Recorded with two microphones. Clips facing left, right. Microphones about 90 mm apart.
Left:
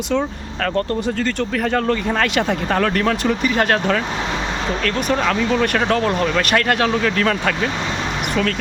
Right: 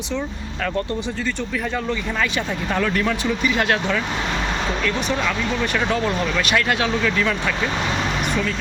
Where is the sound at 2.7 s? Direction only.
50° left (ahead or behind).